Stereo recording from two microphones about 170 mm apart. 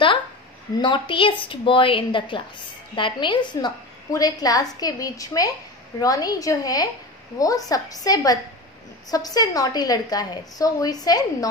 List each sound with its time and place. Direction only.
0.7 s a woman's voice: 30° left (ahead or behind)